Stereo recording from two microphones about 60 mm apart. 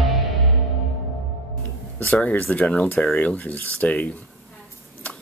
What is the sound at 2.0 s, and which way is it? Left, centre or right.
Speech, left.